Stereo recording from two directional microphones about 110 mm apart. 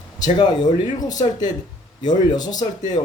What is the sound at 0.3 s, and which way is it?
Speech, 40° left (ahead or behind).